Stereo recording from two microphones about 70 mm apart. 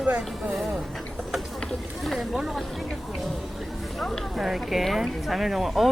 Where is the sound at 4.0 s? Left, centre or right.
Centre.